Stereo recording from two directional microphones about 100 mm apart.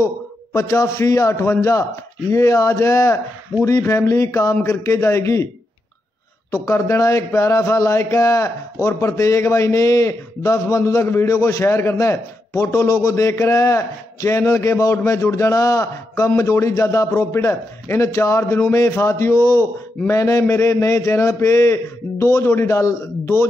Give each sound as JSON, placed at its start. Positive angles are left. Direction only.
{"t": 0.6, "sound": "a man's voice", "side_deg": 30}
{"t": 6.5, "sound": "a man's voice", "side_deg": 30}